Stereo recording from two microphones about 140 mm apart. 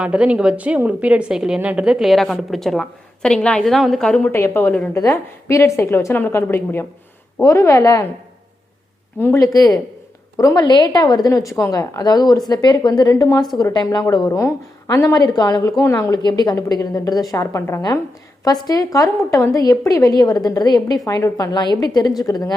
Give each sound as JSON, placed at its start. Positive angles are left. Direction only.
{"t": 0.0, "sound": "a woman's voice", "side_deg": -10}
{"t": 4.3, "sound": "a woman's voice", "side_deg": 20}
{"t": 9.1, "sound": "a woman's voice", "side_deg": 20}